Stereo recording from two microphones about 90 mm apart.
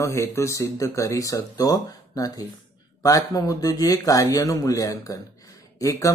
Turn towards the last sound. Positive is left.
turn(degrees=35)  # may be behind; listen again after turning